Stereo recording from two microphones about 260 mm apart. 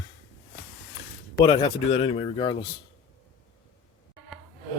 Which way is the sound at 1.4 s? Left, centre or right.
Left.